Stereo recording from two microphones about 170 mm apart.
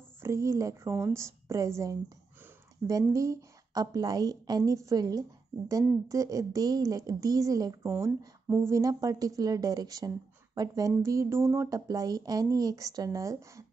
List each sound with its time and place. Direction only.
0.2 s a woman's voice: 15° right (ahead or behind)